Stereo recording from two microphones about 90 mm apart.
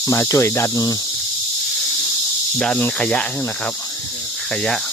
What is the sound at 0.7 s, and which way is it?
Cricket, 45° left (ahead or behind).